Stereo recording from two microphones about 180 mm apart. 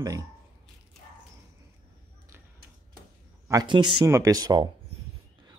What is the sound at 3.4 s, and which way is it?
Speech, 20° right (ahead or behind).